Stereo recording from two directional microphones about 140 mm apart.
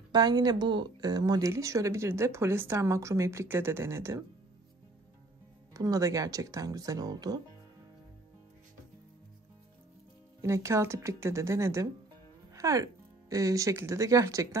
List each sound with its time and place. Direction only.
0.1 s speech: 30° right (ahead or behind)
5.7 s speech: 25° right (ahead or behind)
10.4 s speech: 20° right (ahead or behind)